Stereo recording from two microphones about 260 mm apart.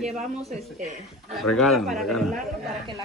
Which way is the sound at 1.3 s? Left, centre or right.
Centre.